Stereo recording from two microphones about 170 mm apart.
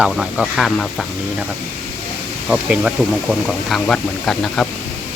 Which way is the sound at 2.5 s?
5° right (ahead or behind).